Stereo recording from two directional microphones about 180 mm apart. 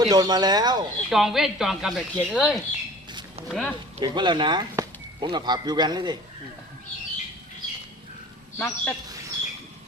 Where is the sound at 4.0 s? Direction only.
25° right (ahead or behind).